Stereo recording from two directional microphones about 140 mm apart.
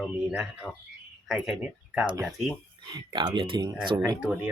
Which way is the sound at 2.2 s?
Centre (ahead or behind).